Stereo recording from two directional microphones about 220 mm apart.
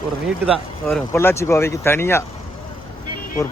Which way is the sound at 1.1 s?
10° left (ahead or behind).